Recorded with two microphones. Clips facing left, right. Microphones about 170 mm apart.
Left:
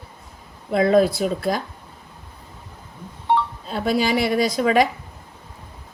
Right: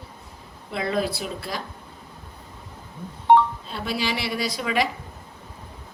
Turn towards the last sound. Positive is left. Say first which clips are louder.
# left 7 dB
turn(degrees=45)  # may be behind; listen again after turning